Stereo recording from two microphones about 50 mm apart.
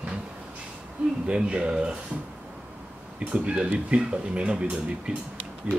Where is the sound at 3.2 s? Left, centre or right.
Right.